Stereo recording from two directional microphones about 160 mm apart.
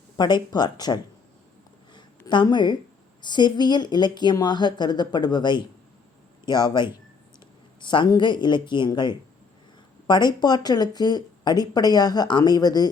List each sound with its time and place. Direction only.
0.2 s speech: 25° left (ahead or behind)
2.0 s a sound: 25° left (ahead or behind)
3.2 s speech: 25° left (ahead or behind)